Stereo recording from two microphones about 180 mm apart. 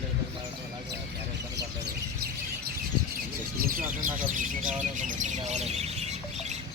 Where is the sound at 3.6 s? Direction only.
50° right (ahead or behind); by 6.0 s 35° right (ahead or behind).